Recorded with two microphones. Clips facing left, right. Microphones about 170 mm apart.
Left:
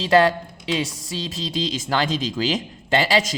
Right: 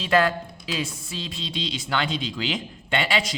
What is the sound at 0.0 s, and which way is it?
A woman's voice, 30° left (ahead or behind).